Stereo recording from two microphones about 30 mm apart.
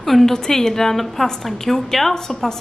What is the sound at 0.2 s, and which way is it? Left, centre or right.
A woman's voice, centre.